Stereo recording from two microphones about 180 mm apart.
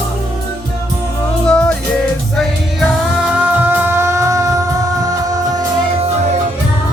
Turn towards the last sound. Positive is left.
turn(degrees=-20)  # may be behind; listen again after turning